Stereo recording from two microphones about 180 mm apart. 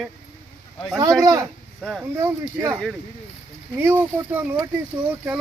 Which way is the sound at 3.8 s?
10° right (ahead or behind).